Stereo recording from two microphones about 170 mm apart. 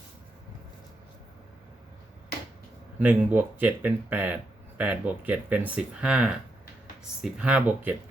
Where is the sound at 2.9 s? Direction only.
10° right (ahead or behind).